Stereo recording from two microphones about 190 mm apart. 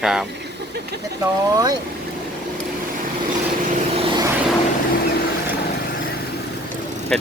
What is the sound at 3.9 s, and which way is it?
Vehicle, 20° right (ahead or behind).